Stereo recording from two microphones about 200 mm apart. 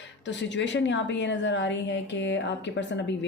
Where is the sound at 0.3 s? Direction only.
65° left (ahead or behind).